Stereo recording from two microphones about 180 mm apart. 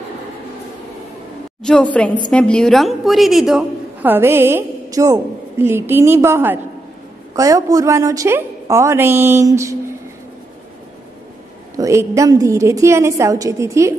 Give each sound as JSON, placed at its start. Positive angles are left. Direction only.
{"t": 1.6, "sound": "a woman's voice", "side_deg": 5}
{"t": 11.7, "sound": "a woman's voice", "side_deg": -15}